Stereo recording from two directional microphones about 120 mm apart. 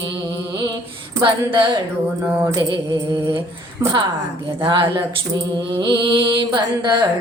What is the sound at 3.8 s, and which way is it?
Speech, 25° right (ahead or behind).